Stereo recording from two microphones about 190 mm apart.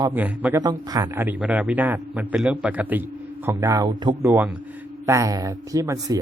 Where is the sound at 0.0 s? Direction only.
10° right (ahead or behind).